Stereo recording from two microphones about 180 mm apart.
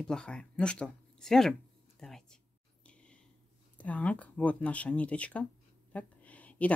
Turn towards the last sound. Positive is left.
turn(degrees=10)  # may be behind; listen again after turning